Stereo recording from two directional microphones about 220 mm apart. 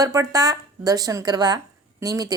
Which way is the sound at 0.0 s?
15° right (ahead or behind).